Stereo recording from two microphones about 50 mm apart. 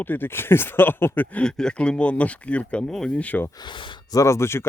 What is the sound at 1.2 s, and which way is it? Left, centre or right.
Speech, left.